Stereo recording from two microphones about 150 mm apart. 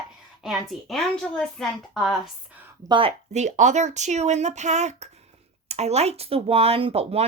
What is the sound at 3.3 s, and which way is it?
Speech, 50° right (ahead or behind).